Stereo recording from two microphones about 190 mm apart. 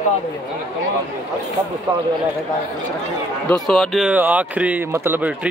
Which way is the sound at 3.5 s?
5° left (ahead or behind).